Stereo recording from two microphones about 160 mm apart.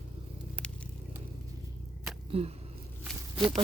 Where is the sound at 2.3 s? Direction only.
40° right (ahead or behind).